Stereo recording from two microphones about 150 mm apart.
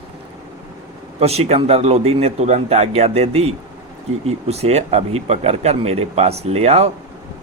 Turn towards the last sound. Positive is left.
turn(degrees=-45)  # may be behind; listen again after turning